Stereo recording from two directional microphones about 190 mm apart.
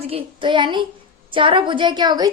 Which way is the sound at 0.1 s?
25° right (ahead or behind).